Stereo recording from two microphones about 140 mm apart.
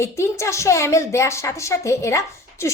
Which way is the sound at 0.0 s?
20° left (ahead or behind).